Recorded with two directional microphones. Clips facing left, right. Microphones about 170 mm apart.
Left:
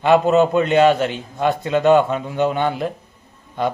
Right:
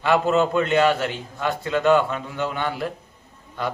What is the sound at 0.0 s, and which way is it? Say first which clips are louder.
A man's voice: left 5 dB; 20° left (ahead or behind).